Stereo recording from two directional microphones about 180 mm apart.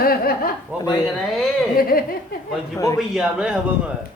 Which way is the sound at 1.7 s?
55° left (ahead or behind).